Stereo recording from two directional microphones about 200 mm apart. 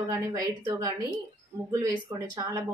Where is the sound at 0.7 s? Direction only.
15° right (ahead or behind).